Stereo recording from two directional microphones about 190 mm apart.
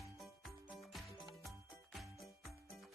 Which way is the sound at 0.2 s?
Centre (ahead or behind).